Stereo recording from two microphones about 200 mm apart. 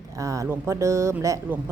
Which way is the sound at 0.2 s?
15° right (ahead or behind).